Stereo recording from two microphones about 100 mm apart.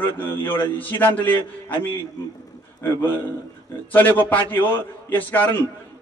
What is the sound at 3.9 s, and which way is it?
A man's voice, 15° left (ahead or behind).